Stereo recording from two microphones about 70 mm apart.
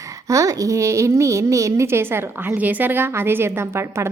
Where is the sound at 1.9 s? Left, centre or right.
Right.